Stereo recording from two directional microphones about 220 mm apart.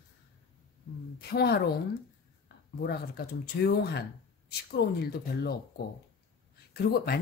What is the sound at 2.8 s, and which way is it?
Speech, 45° left (ahead or behind).